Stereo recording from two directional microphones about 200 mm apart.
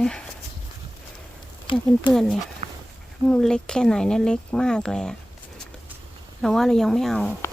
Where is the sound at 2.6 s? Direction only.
40° right (ahead or behind).